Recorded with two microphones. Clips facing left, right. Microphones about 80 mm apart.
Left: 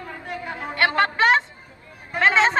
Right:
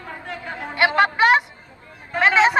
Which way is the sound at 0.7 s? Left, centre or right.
Centre.